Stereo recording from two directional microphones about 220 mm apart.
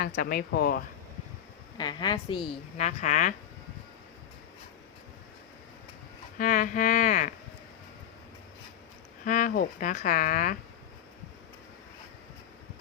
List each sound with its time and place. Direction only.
0.0 s speech: 45° left (ahead or behind)
1.8 s a woman's voice: 20° left (ahead or behind)
6.4 s speech: 35° left (ahead or behind)
9.2 s speech: 35° left (ahead or behind)